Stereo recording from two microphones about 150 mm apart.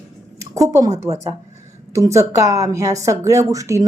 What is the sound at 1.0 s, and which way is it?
Speech, 45° right (ahead or behind).